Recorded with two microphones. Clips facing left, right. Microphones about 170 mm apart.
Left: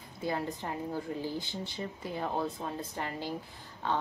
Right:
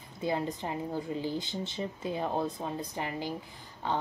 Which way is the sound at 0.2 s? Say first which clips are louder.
Right 2 dB; 20° right (ahead or behind).